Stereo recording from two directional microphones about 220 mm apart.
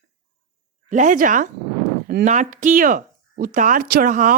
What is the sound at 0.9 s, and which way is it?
Speech, 35° right (ahead or behind).